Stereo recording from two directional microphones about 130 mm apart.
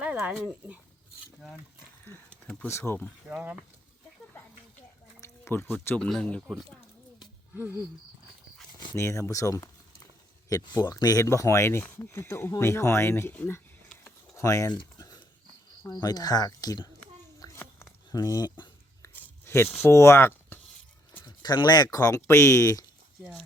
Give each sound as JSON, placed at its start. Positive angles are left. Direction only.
{"t": 0.0, "sound": "speech", "side_deg": -10}
{"t": 2.0, "sound": "speech", "side_deg": 10}
{"t": 3.2, "sound": "speech", "side_deg": -5}
{"t": 5.2, "sound": "speech", "side_deg": 20}
{"t": 7.5, "sound": "wild animals", "side_deg": -15}
{"t": 9.0, "sound": "speech", "side_deg": 20}
{"t": 14.8, "sound": "a sound", "side_deg": 30}
{"t": 15.9, "sound": "speech", "side_deg": 30}
{"t": 17.4, "sound": "a sound", "side_deg": 20}
{"t": 19.0, "sound": "a sound", "side_deg": 20}
{"t": 19.7, "sound": "speech", "side_deg": 20}
{"t": 21.2, "sound": "speech", "side_deg": 35}